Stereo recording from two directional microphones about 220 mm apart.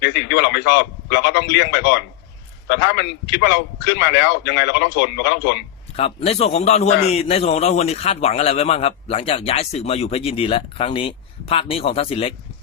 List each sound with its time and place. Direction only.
0.0 s a man's voice: 50° left (ahead or behind)
6.0 s a man's voice: 25° left (ahead or behind)